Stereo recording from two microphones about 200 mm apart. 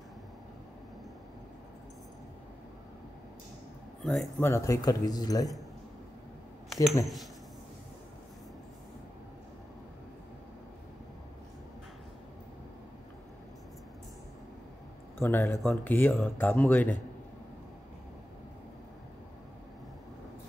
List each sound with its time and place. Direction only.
4.0 s speech: centre (ahead or behind)
4.5 s speech: 15° left (ahead or behind)
6.7 s a sound: centre (ahead or behind)
15.2 s speech: 15° left (ahead or behind)